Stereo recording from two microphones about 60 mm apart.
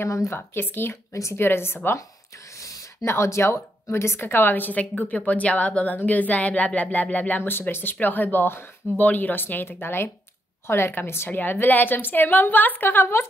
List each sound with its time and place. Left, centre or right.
0.0 s a woman's voice: left
0.6 s a woman's voice: left
2.5 s a sound: left
3.1 s a woman's voice: left